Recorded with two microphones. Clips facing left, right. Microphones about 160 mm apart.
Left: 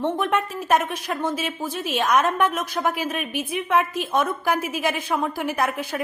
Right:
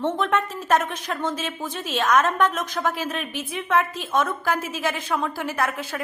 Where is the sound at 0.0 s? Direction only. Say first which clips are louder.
Even; 10° left (ahead or behind).